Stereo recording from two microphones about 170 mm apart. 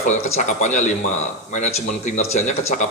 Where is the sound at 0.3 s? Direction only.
45° left (ahead or behind).